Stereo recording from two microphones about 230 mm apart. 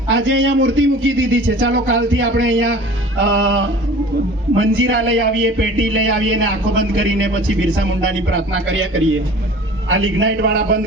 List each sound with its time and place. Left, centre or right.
0.1 s a man's voice: right